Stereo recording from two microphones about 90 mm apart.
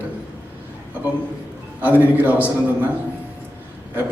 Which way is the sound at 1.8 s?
20° right (ahead or behind).